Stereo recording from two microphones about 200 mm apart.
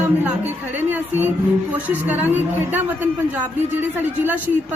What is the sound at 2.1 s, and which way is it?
A man's voice, 10° right (ahead or behind).